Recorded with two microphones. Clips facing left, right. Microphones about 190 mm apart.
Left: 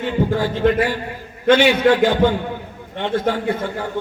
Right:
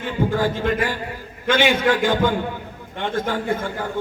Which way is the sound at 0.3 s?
50° right (ahead or behind).